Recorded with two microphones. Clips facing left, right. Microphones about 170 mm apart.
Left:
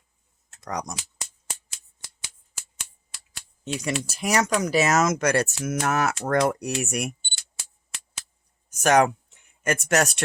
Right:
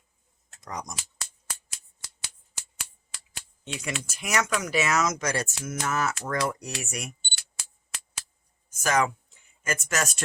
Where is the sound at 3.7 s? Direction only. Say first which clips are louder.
Left 6 dB; 35° left (ahead or behind); by 6.1 s 65° left (ahead or behind).